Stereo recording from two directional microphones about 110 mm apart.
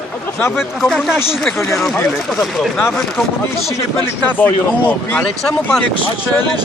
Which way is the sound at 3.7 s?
25° left (ahead or behind).